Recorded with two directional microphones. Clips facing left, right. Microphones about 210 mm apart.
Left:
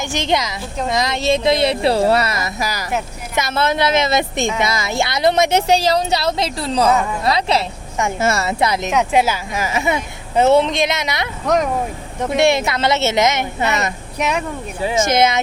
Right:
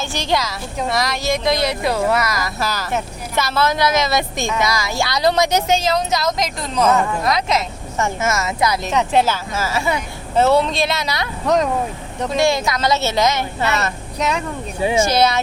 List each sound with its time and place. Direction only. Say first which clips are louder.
0.0 s speech: left 1 dB; 20° left (ahead or behind)
2.6 s speech: even; 10° left (ahead or behind)
8.9 s a woman's voice: even; 10° left (ahead or behind)